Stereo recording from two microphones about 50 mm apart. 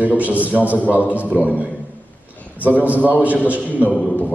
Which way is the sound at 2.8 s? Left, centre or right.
Right.